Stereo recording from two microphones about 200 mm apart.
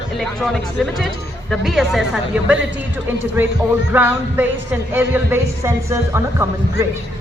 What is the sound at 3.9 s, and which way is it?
A woman's voice, 10° right (ahead or behind).